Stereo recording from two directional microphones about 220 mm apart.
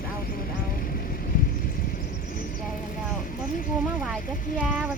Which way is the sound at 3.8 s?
5° right (ahead or behind).